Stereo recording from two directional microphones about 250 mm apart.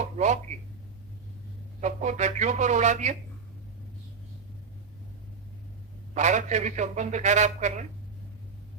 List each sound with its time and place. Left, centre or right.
1.8 s a man's voice: right
6.1 s a man's voice: right